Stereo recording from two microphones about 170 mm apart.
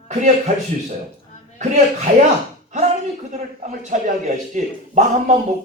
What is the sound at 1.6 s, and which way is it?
Speech, 45° right (ahead or behind).